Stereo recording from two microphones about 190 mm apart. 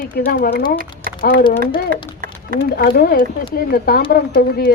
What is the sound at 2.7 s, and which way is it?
Speech, 55° left (ahead or behind).